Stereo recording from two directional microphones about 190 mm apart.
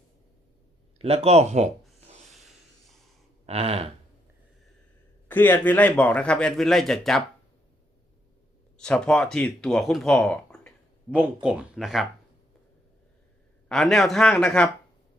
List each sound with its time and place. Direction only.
0.9 s speech: 30° right (ahead or behind)
2.3 s a sound: centre (ahead or behind)
3.4 s speech: 30° right (ahead or behind)
5.3 s a man's voice: 10° left (ahead or behind)
8.8 s a man's voice: 5° left (ahead or behind)
11.1 s a man's voice: 5° right (ahead or behind)
13.7 s a man's voice: centre (ahead or behind)